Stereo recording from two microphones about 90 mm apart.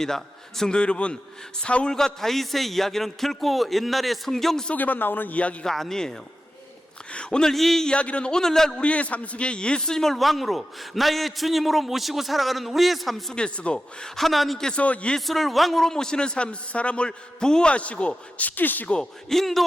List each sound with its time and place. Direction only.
0.0 s a man's voice: 5° left (ahead or behind)
4.7 s a man's voice: 20° left (ahead or behind)
15.2 s a man's voice: centre (ahead or behind)